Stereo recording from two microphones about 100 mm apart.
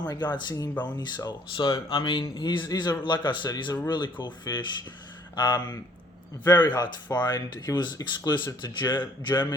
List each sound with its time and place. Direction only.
0.1 s speech: 45° left (ahead or behind)
2.2 s a man's voice: 40° left (ahead or behind)
2.5 s speech: 50° left (ahead or behind)